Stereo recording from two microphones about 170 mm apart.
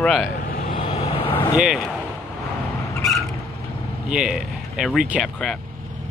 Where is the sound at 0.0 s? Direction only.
Centre (ahead or behind).